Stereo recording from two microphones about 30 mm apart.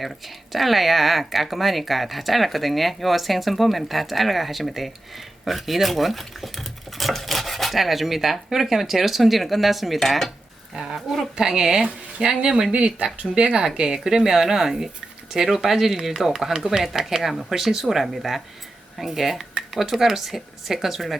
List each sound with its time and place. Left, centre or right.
0.5 s speech: centre
10.0 s speech: centre
11.3 s a woman's voice: right
13.3 s speech: right
13.6 s a woman's voice: right